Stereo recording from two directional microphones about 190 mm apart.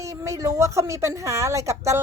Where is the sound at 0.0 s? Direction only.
15° right (ahead or behind).